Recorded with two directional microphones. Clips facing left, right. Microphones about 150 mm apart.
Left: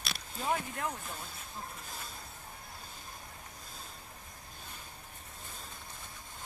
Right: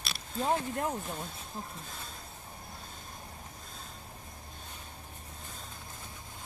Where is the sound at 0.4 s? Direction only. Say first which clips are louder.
Right 4 dB; 35° right (ahead or behind).